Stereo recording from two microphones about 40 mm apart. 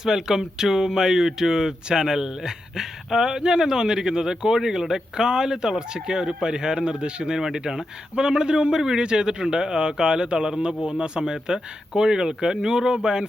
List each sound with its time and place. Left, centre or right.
0.0 s a man's voice: centre